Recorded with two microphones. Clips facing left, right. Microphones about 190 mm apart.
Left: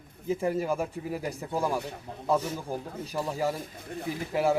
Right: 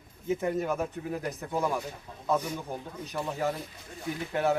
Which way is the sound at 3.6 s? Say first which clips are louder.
Left 5 dB; 60° left (ahead or behind).